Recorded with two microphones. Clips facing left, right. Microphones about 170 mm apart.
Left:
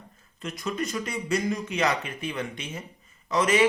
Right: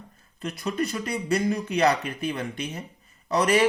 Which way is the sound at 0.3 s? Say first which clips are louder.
Right 3 dB; 35° right (ahead or behind).